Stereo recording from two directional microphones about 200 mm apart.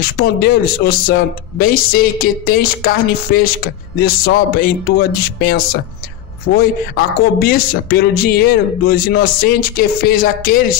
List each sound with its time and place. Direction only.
0.0 s speech: 50° left (ahead or behind)